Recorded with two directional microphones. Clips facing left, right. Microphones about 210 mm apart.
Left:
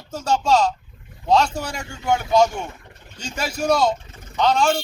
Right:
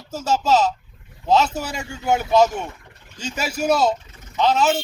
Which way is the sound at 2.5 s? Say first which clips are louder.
Right 1 dB; 25° left (ahead or behind).